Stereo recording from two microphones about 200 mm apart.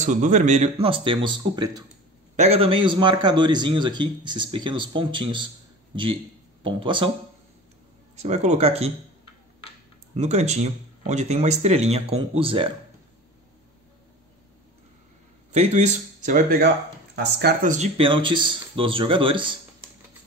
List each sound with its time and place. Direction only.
0.0 s a man's voice: 40° right (ahead or behind); by 1.9 s 20° right (ahead or behind)
2.3 s a man's voice: 30° right (ahead or behind)
6.6 s a man's voice: 25° right (ahead or behind)
8.2 s speech: 35° right (ahead or behind)
10.1 s speech: 35° right (ahead or behind)
15.5 s speech: 35° right (ahead or behind)
17.1 s speech: 55° right (ahead or behind)
17.6 s a man's voice: 35° right (ahead or behind)